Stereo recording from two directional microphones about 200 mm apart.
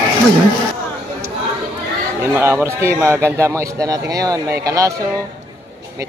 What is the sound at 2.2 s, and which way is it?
A man's voice, 10° right (ahead or behind).